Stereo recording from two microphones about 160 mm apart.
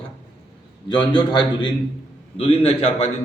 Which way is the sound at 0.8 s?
30° left (ahead or behind).